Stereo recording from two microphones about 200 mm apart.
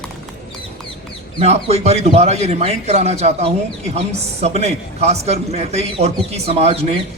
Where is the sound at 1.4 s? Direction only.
30° right (ahead or behind).